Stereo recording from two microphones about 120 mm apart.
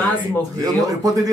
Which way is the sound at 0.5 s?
30° right (ahead or behind).